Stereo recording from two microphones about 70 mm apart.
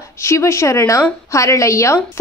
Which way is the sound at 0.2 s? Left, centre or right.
Left.